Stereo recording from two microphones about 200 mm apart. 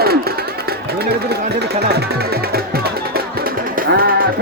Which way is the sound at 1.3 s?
55° right (ahead or behind).